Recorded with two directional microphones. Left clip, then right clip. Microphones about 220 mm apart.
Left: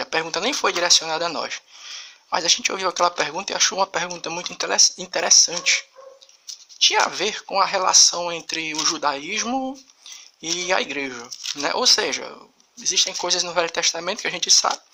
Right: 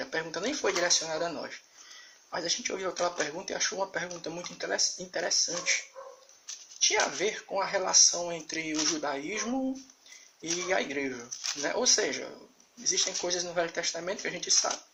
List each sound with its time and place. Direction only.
0.0 s speech: 40° left (ahead or behind)
6.8 s speech: 40° left (ahead or behind)